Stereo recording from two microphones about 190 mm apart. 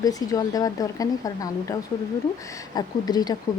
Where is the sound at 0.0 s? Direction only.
20° left (ahead or behind).